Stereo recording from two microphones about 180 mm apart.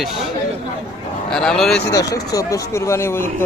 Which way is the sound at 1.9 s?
20° left (ahead or behind).